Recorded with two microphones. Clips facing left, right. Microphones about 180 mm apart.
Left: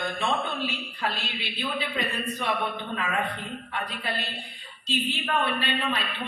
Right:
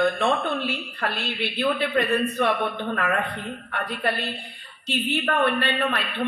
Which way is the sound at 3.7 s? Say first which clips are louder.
Right 7 dB; 60° right (ahead or behind).